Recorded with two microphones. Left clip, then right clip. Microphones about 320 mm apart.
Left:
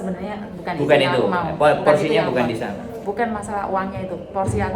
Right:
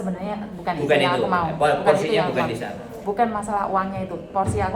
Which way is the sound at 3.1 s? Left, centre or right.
Centre.